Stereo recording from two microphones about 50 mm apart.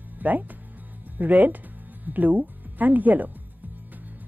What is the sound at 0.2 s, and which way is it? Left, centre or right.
Speech, right.